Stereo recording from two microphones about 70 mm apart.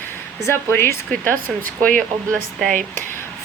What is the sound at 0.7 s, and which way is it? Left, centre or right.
Speech, left.